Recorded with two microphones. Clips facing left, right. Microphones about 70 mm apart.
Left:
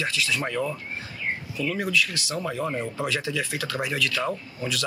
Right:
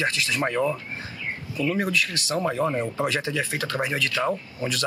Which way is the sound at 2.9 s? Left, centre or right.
Right.